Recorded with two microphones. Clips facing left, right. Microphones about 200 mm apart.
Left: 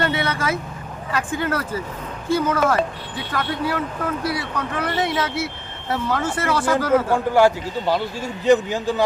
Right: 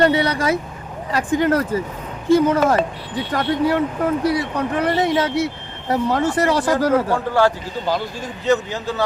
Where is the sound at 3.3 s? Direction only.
20° right (ahead or behind).